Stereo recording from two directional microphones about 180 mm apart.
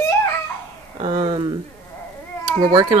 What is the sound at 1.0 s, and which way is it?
Speech, 30° right (ahead or behind).